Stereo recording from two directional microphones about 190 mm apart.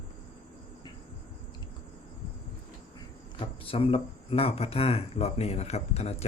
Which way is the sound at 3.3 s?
30° left (ahead or behind).